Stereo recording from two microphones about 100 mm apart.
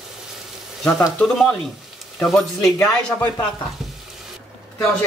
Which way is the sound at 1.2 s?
5° left (ahead or behind).